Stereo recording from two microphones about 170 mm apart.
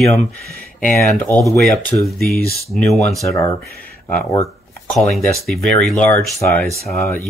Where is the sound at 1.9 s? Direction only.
25° left (ahead or behind).